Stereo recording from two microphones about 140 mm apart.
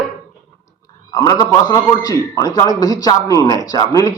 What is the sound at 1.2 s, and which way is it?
A man's voice, 30° left (ahead or behind).